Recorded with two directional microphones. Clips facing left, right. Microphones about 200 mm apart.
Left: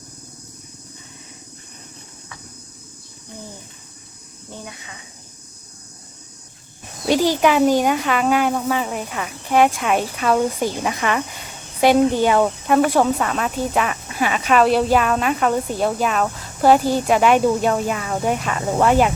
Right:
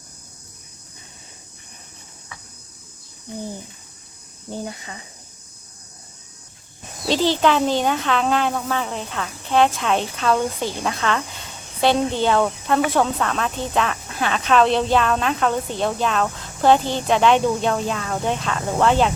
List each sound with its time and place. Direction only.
4.5 s speech: 35° right (ahead or behind)
7.0 s speech: 10° left (ahead or behind)